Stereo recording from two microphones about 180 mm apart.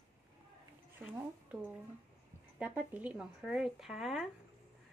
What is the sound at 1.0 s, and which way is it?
A woman's voice, 10° right (ahead or behind).